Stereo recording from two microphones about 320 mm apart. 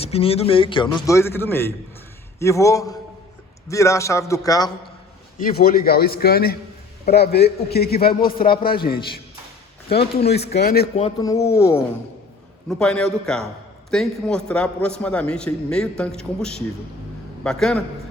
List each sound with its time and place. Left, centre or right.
0.0 s a man's voice: centre
5.5 s a man's voice: left
10.0 s a man's voice: centre
10.5 s a man's voice: left; by 17.8 s centre